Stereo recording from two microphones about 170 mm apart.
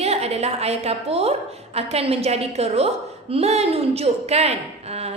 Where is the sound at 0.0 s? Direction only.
40° right (ahead or behind).